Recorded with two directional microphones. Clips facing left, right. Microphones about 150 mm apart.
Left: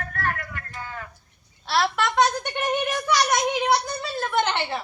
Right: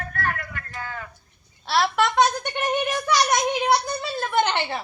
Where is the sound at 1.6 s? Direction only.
Centre (ahead or behind).